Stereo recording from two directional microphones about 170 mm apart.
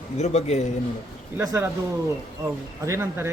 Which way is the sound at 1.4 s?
15° right (ahead or behind).